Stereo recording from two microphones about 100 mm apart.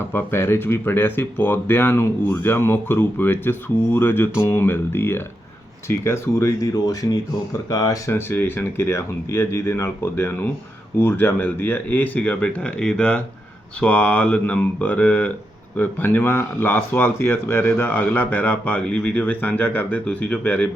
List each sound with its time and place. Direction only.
0.1 s speech: 20° left (ahead or behind)
8.1 s speech: 20° left (ahead or behind)